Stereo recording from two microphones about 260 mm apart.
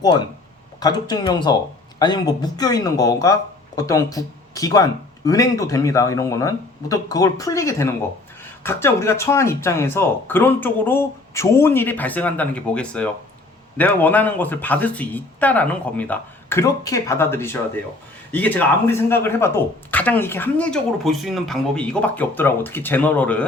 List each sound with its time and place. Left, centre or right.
0.8 s speech: centre